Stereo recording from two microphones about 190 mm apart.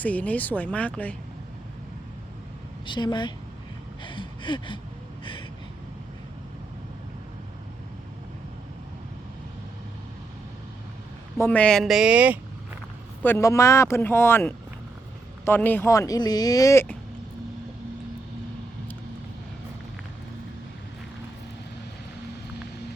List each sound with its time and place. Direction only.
0.0 s speech: 10° left (ahead or behind)
2.8 s a woman's voice: 25° left (ahead or behind)
4.0 s a sound: 25° left (ahead or behind)
11.3 s speech: 10° left (ahead or behind); by 12.4 s 5° right (ahead or behind)
13.2 s speech: 15° left (ahead or behind)